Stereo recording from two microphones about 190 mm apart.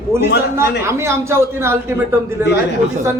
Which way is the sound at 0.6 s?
15° right (ahead or behind).